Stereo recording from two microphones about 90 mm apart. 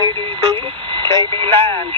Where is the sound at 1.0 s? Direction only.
65° right (ahead or behind).